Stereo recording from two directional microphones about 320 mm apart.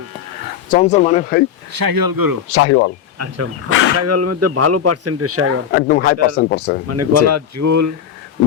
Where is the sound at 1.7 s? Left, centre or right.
Right.